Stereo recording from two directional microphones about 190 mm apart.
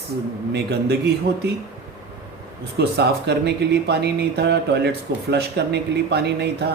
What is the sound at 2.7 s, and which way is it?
Speech, 60° right (ahead or behind).